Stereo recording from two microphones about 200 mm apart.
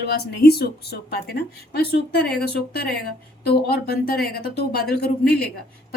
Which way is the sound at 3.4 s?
55° left (ahead or behind).